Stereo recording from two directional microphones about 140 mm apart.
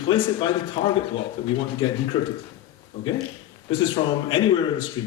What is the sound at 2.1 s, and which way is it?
Speech, 45° left (ahead or behind).